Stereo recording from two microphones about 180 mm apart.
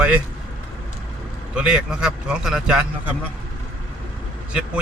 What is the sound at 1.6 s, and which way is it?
Speech, 5° right (ahead or behind).